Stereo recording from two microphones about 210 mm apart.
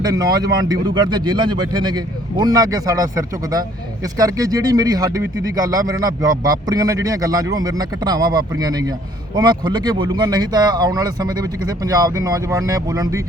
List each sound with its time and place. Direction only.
0.0 s speech: 15° right (ahead or behind)